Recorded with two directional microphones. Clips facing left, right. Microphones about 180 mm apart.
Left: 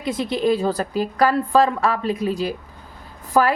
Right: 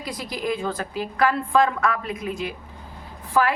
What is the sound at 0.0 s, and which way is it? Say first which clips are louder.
A woman's voice: left 8 dB; 25° left (ahead or behind).